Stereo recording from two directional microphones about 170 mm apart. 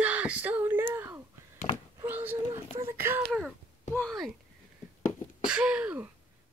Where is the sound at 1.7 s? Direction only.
30° left (ahead or behind).